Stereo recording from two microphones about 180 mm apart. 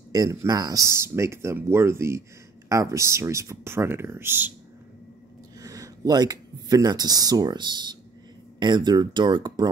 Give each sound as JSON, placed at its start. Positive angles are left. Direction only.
{"t": 0.1, "sound": "speech", "side_deg": -20}
{"t": 5.6, "sound": "speech", "side_deg": -20}